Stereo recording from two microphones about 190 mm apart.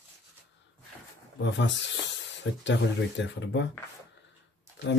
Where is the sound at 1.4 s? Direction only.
70° left (ahead or behind).